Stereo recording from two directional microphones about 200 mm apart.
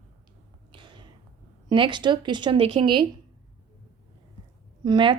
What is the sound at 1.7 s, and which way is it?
Speech, 25° right (ahead or behind).